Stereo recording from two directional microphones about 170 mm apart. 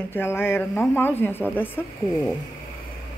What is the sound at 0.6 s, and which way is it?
Speech, centre (ahead or behind).